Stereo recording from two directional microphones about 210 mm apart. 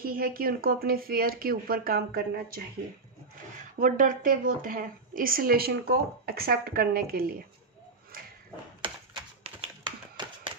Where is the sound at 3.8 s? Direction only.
40° right (ahead or behind).